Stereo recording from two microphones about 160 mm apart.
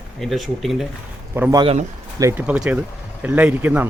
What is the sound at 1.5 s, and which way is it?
Speech, 35° right (ahead or behind).